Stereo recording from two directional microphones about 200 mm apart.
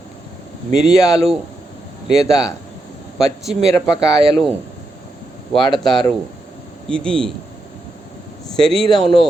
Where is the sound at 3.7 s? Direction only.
15° left (ahead or behind).